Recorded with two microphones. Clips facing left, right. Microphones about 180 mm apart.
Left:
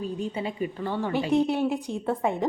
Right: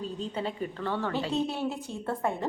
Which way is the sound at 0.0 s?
10° left (ahead or behind).